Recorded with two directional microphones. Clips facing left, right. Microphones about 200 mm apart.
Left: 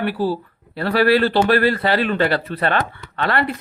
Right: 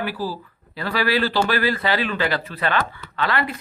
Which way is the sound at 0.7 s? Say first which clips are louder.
Left 6 dB; 60° left (ahead or behind).